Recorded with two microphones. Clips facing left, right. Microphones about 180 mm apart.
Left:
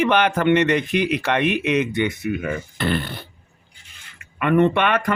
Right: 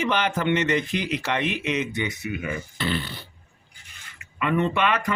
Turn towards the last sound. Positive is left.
turn(degrees=60)  # may be behind; listen again after turning